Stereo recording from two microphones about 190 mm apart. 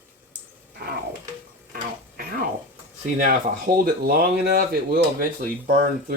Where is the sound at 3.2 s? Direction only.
45° right (ahead or behind).